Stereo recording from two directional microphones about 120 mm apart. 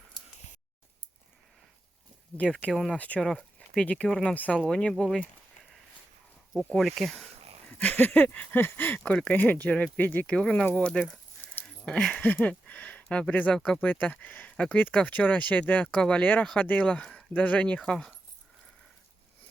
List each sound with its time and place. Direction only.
2.4 s speech: 10° left (ahead or behind)
6.7 s speech: centre (ahead or behind)
7.3 s a sound: 55° right (ahead or behind)
7.7 s speech: 10° left (ahead or behind)